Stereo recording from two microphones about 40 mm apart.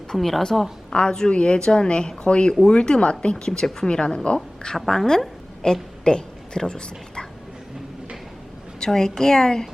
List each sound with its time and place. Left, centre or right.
0.1 s a woman's voice: centre
0.9 s a woman's voice: centre
4.6 s a woman's voice: centre
8.8 s a woman's voice: centre